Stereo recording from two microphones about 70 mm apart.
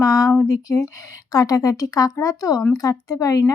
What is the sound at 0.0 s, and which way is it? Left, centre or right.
Speech, left.